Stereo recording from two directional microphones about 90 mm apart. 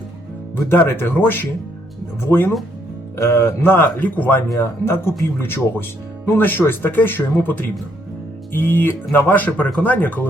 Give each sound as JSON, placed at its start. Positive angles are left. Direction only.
{"t": 0.7, "sound": "speech", "side_deg": 25}